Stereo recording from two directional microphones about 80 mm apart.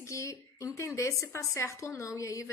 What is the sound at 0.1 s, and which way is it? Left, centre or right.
A woman's voice, left.